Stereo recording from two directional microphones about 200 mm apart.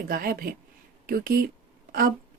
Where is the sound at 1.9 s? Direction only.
45° right (ahead or behind).